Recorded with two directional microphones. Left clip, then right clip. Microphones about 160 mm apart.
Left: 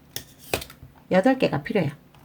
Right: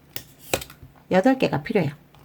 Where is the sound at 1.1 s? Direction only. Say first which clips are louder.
Right 1 dB; 15° right (ahead or behind).